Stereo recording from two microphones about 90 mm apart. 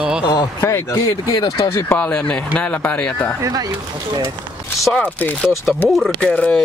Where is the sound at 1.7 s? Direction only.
20° left (ahead or behind).